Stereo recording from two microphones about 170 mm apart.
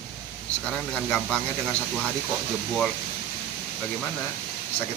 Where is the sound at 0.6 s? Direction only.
5° left (ahead or behind).